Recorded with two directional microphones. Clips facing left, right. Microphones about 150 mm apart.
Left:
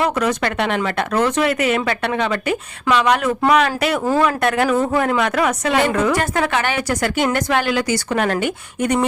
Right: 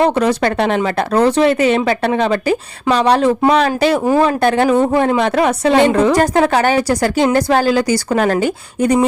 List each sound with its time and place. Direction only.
0.0 s a woman's voice: 30° right (ahead or behind)